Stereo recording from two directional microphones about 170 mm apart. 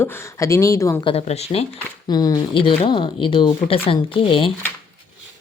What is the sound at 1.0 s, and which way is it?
Speech, 35° left (ahead or behind).